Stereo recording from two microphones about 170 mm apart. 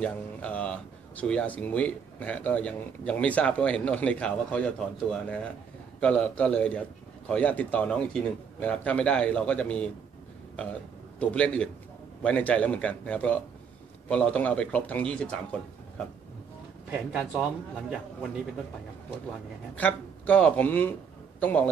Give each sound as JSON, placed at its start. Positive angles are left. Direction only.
{"t": 0.0, "sound": "speech", "side_deg": 5}
{"t": 16.9, "sound": "speech", "side_deg": -5}
{"t": 19.7, "sound": "a man's voice", "side_deg": 10}